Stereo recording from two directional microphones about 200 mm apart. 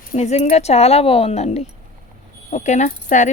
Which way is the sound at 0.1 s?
35° left (ahead or behind).